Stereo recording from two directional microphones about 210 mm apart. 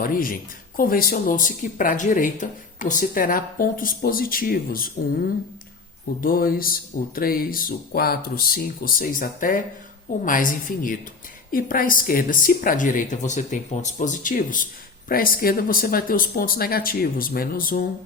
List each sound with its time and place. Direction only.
0.0 s a woman's voice: 40° left (ahead or behind)
6.2 s speech: 45° left (ahead or behind)